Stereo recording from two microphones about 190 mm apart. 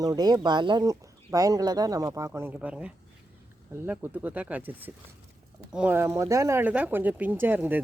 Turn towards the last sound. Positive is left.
turn(degrees=-10)  # may be behind; listen again after turning